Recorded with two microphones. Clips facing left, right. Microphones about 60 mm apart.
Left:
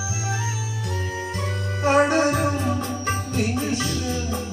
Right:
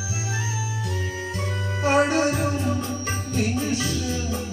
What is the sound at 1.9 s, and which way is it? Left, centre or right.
Music, left.